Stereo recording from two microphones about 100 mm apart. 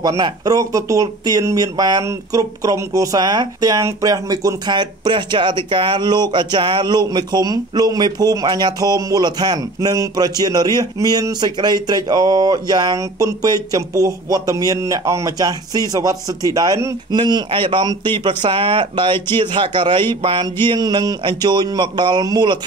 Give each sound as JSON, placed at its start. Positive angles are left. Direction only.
{"t": 0.0, "sound": "speech", "side_deg": -40}
{"t": 4.7, "sound": "speech", "side_deg": -50}